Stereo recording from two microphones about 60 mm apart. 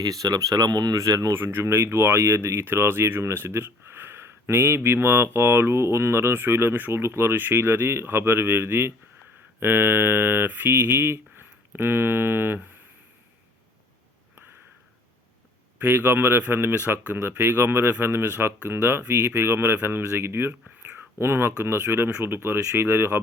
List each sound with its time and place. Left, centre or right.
0.0 s speech: right
1.3 s speech: right
10.9 s speech: right
15.8 s speech: right